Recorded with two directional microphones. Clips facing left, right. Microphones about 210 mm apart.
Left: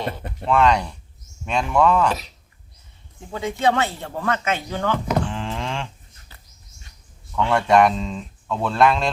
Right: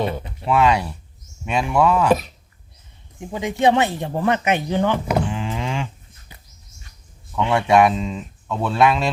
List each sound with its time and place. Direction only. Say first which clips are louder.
0.4 s speech: even; 5° right (ahead or behind)
3.2 s speech: right 4 dB; 15° right (ahead or behind)
5.3 s cattle: right 2 dB; 5° right (ahead or behind)
7.3 s speech: right 1 dB; 15° right (ahead or behind)